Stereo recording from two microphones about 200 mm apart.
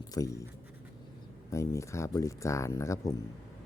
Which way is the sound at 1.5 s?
15° left (ahead or behind).